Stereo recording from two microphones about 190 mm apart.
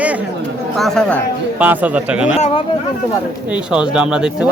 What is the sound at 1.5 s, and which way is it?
Speech, 10° right (ahead or behind).